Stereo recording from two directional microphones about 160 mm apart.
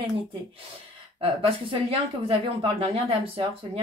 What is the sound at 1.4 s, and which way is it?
Speech, 35° right (ahead or behind).